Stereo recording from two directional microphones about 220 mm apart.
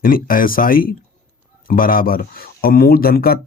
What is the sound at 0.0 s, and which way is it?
Speech, 40° left (ahead or behind).